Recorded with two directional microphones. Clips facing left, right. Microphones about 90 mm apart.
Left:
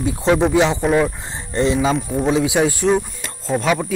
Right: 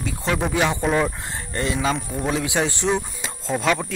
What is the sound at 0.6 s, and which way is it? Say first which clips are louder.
Speech: left 5 dB; 20° left (ahead or behind).